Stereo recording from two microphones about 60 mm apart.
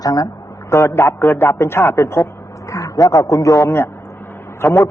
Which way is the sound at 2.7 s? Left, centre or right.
Left.